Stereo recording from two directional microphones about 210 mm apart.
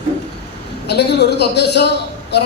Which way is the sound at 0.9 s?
55° left (ahead or behind).